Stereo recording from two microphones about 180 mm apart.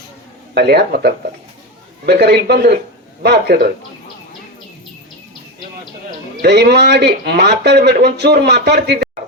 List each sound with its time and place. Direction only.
0.5 s speech: 65° right (ahead or behind)
6.4 s speech: 65° right (ahead or behind)